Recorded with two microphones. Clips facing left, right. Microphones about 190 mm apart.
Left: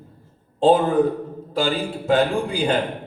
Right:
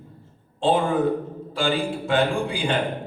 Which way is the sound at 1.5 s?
40° left (ahead or behind).